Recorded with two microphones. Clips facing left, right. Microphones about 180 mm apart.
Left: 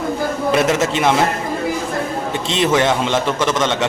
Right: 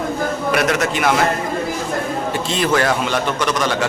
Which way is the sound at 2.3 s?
25° left (ahead or behind).